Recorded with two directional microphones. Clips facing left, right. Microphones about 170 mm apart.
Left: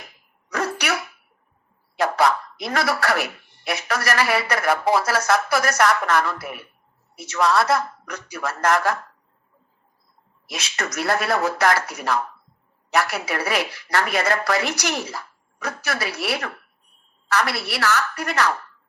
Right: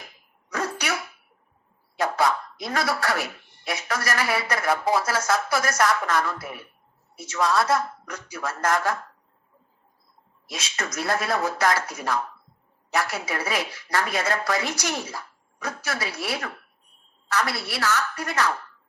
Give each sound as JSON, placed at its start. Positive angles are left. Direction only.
{"t": 0.5, "sound": "dog", "side_deg": 70}
{"t": 2.0, "sound": "a woman's voice", "side_deg": 75}
{"t": 10.4, "sound": "a woman's voice", "side_deg": 70}